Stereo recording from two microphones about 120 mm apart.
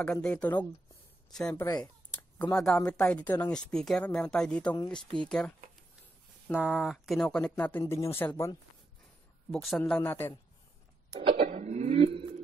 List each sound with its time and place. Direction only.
0.0 s speech: 10° left (ahead or behind)
1.6 s speech: 30° left (ahead or behind)
2.5 s speech: 10° left (ahead or behind)
6.5 s speech: 5° right (ahead or behind); by 7.8 s 15° left (ahead or behind)
7.8 s speech: 25° left (ahead or behind)
9.5 s speech: 5° left (ahead or behind)
11.4 s a sound: 85° right; by 12.3 s 55° right (ahead or behind)